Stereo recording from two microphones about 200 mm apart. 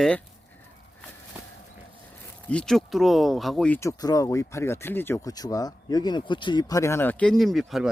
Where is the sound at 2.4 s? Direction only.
5° left (ahead or behind).